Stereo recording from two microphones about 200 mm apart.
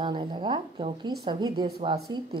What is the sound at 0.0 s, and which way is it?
Speech, 25° right (ahead or behind).